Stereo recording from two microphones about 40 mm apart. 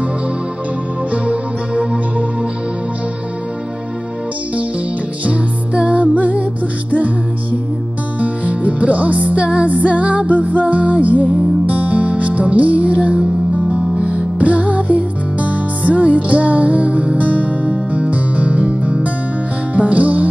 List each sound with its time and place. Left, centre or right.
1.1 s music: right
5.2 s music: right
8.2 s music: right
19.7 s music: right